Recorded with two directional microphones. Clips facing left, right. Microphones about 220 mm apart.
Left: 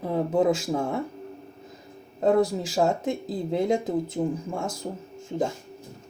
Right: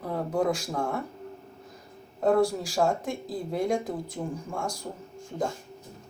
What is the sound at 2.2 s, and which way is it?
Speech, 20° left (ahead or behind).